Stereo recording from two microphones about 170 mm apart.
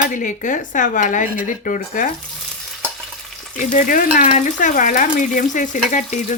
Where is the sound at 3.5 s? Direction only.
50° left (ahead or behind).